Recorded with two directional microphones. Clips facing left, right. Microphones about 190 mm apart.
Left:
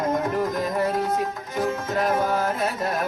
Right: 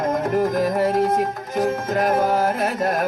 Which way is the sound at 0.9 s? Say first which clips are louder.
Right 5 dB; 40° right (ahead or behind).